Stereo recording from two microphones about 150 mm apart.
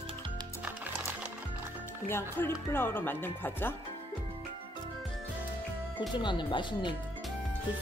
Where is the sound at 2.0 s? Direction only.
15° left (ahead or behind).